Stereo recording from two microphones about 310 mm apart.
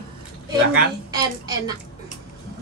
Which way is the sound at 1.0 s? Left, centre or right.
Centre.